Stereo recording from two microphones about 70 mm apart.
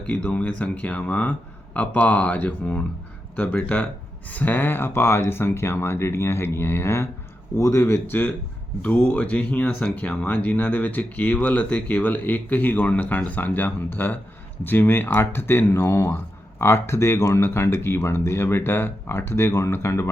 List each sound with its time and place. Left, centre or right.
0.0 s speech: centre; by 20.1 s left